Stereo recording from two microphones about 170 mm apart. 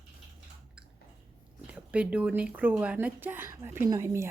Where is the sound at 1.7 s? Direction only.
5° right (ahead or behind).